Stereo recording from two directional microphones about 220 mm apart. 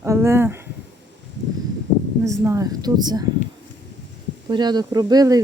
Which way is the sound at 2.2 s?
15° right (ahead or behind).